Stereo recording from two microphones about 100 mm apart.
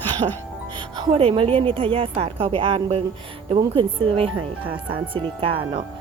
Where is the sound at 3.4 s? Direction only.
65° right (ahead or behind).